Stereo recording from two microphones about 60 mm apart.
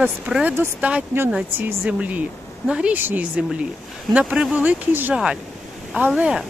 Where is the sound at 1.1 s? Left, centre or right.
Right.